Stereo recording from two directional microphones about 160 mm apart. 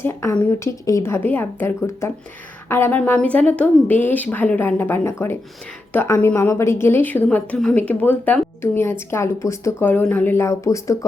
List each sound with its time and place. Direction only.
0.0 s a woman's voice: 15° left (ahead or behind)